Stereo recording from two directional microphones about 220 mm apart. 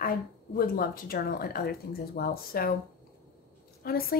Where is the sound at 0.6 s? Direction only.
40° left (ahead or behind).